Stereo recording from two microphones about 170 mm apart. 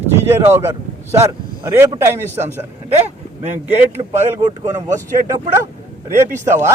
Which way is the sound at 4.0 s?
40° right (ahead or behind).